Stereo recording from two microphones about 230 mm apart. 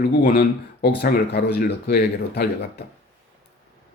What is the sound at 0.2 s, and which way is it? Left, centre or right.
Speech, left.